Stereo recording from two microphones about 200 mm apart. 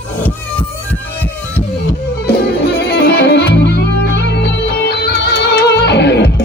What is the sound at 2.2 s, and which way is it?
Music, 55° left (ahead or behind).